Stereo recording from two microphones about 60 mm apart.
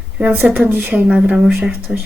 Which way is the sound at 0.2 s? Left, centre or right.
Right.